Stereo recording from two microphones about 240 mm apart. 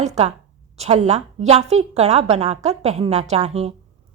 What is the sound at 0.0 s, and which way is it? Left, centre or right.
A woman's voice, right.